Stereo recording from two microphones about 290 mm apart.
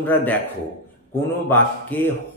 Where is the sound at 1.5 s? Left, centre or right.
Centre.